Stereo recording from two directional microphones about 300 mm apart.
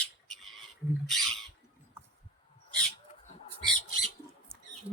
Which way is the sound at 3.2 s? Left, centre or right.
Left.